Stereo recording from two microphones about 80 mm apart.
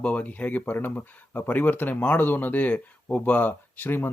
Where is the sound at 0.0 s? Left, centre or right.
Centre.